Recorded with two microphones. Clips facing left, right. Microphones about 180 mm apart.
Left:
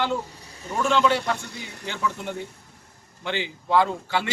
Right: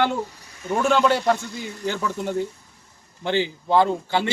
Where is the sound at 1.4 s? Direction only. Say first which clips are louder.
Right 5 dB; 65° left (ahead or behind).